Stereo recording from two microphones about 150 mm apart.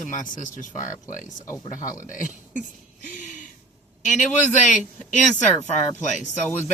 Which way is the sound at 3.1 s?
55° left (ahead or behind).